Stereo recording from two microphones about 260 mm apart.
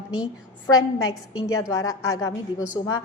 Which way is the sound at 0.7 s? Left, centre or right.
Left.